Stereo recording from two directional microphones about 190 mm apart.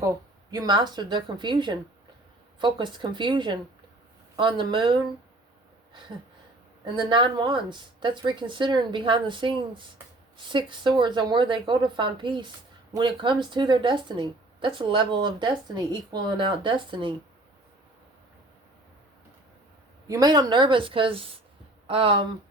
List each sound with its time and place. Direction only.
0.5 s a woman's voice: 20° right (ahead or behind)
7.1 s a woman's voice: 25° right (ahead or behind)
20.1 s a woman's voice: 20° right (ahead or behind)